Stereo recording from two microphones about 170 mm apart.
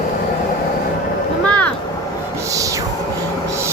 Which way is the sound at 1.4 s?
10° left (ahead or behind).